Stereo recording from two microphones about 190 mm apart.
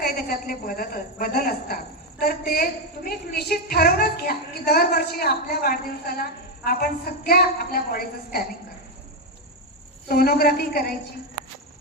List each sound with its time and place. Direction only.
0.0 s a sound: 50° left (ahead or behind)
6.7 s a woman's voice: 50° left (ahead or behind)
10.1 s a woman's voice: 55° left (ahead or behind)